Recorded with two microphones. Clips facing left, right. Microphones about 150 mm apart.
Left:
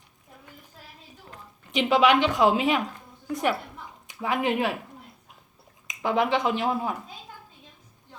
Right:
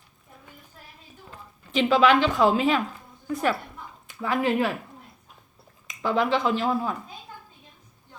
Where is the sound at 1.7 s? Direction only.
15° left (ahead or behind).